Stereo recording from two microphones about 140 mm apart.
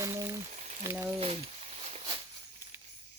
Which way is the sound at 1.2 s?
45° right (ahead or behind).